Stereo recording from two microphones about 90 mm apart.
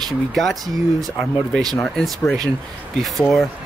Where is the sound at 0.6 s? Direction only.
45° right (ahead or behind).